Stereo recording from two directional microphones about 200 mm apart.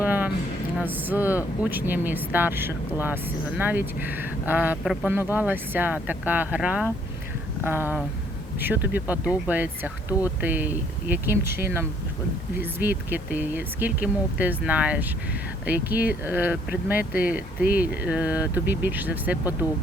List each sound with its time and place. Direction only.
0.0 s a sound: 10° right (ahead or behind)
0.8 s speech: 10° right (ahead or behind)
17.0 s speech: 45° left (ahead or behind)
17.2 s speech: 5° right (ahead or behind)